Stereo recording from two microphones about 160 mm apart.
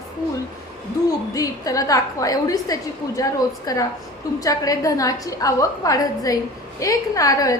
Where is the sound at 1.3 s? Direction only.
20° left (ahead or behind).